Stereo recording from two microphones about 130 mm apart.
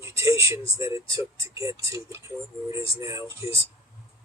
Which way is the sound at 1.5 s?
25° right (ahead or behind).